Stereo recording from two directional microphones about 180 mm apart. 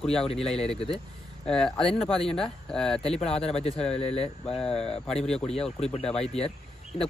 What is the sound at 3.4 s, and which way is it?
Speech, 35° left (ahead or behind).